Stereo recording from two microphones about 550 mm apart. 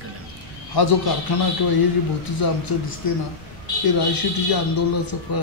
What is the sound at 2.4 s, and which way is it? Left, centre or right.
Speech, left.